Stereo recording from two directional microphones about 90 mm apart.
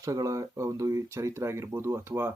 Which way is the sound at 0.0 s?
40° right (ahead or behind).